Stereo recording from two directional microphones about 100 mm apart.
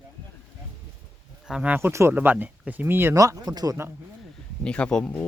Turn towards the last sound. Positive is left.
turn(degrees=10)  # may be behind; listen again after turning